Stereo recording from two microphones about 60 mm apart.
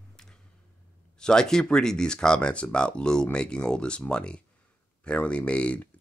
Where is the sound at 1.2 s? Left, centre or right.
Centre.